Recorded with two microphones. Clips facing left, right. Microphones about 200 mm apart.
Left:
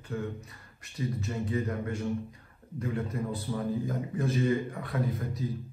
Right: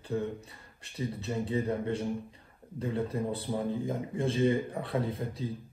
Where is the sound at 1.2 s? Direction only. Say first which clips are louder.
Right 2 dB; 30° right (ahead or behind).